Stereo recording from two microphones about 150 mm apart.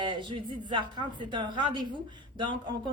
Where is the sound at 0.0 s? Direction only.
35° right (ahead or behind).